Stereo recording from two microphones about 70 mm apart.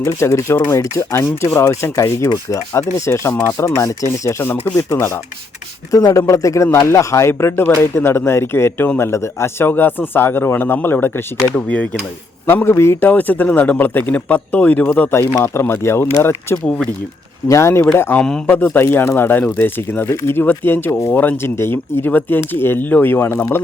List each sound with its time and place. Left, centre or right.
0.0 s speech: left
5.9 s speech: left
11.5 s speech: centre
12.6 s speech: left
13.0 s speech: left
15.4 s speech: left
16.6 s speech: centre
17.5 s speech: left
18.2 s speech: centre
18.4 s speech: left